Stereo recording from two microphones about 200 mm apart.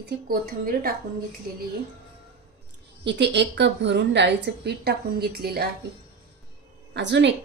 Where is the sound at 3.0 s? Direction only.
60° right (ahead or behind).